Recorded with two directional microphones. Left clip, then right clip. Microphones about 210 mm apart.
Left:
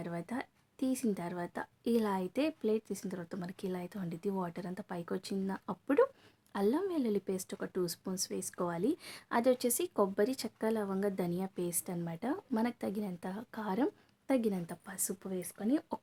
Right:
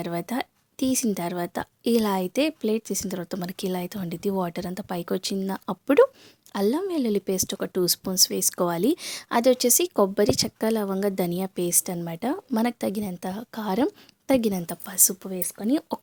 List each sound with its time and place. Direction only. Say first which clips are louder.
0.0 s speech: right 11 dB; 40° right (ahead or behind)